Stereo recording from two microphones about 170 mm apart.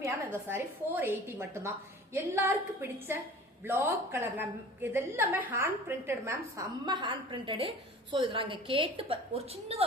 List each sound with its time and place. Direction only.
0.0 s a woman's voice: 10° right (ahead or behind)
3.6 s a woman's voice: 15° right (ahead or behind); by 9.8 s 35° right (ahead or behind)